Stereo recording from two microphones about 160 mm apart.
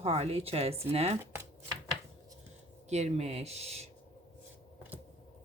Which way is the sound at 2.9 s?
45° right (ahead or behind).